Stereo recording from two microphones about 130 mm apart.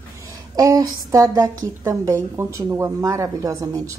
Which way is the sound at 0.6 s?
25° right (ahead or behind).